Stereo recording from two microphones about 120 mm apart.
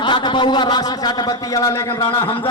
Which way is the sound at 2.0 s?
45° left (ahead or behind).